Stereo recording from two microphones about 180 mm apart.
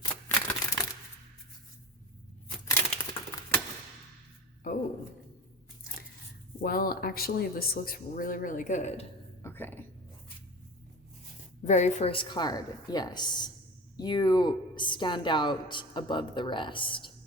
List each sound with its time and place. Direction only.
0.0 s typewriter: 20° left (ahead or behind)
2.6 s typewriter: 15° left (ahead or behind)
6.6 s speech: 55° left (ahead or behind)
9.4 s a sound: 10° left (ahead or behind)
11.6 s speech: 40° left (ahead or behind)